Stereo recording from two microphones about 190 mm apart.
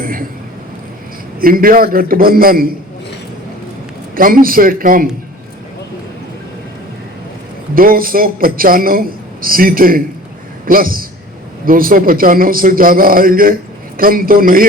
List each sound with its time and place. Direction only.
0.0 s vehicle: 50° right (ahead or behind)
1.4 s a man's voice: 50° right (ahead or behind)
4.1 s a man's voice: 50° right (ahead or behind)
7.8 s a man's voice: 50° right (ahead or behind)